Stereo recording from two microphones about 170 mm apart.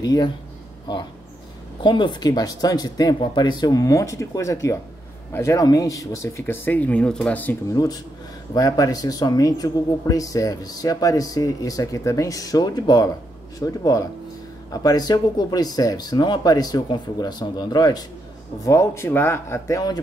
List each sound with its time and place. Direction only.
0.0 s speech: 25° left (ahead or behind)
1.8 s speech: 25° left (ahead or behind); by 7.5 s 10° left (ahead or behind)
7.7 s speech: 20° left (ahead or behind)